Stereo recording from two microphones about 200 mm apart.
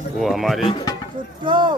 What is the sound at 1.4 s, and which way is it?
Speech, 20° right (ahead or behind).